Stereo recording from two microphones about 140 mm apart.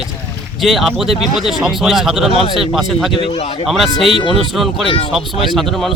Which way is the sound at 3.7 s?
Centre (ahead or behind).